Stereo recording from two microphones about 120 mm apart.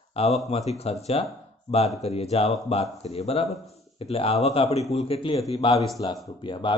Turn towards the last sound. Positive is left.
turn(degrees=45)  # may be behind; listen again after turning